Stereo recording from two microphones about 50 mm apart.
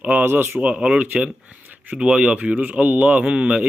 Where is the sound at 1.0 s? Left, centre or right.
Right.